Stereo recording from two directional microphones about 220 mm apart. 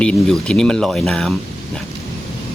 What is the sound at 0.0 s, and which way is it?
Speech, 5° left (ahead or behind).